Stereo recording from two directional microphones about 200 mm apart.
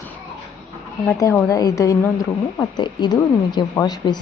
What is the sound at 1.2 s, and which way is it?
A woman's voice, 15° left (ahead or behind).